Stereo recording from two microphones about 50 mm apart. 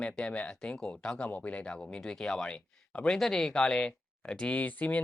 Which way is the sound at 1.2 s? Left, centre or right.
Left.